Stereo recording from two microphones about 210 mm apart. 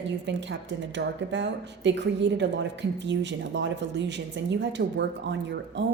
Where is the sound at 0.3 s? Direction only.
60° right (ahead or behind).